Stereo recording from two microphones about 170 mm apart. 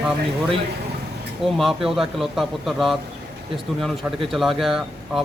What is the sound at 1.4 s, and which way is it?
Speech, centre (ahead or behind).